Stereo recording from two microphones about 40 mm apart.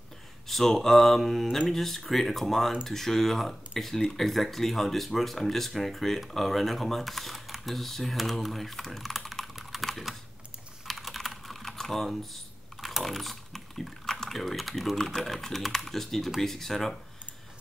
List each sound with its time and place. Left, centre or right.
0.5 s speech: centre
9.6 s typing: centre
11.0 s typing: centre
15.0 s speech: centre